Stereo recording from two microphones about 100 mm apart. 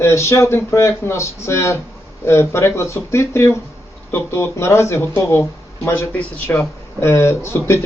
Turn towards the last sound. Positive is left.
turn(degrees=25)  # may be behind; listen again after turning